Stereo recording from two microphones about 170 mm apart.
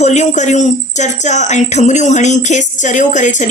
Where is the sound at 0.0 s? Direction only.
40° left (ahead or behind).